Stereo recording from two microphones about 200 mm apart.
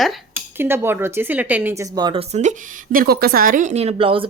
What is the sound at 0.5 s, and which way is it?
Speech, 10° right (ahead or behind).